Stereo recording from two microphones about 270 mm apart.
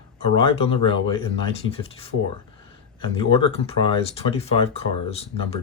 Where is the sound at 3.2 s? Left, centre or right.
Left.